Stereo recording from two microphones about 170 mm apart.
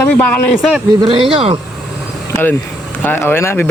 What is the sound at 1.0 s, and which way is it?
Speech, 30° right (ahead or behind).